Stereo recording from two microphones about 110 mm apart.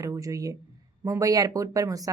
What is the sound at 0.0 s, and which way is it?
Speech, 30° right (ahead or behind).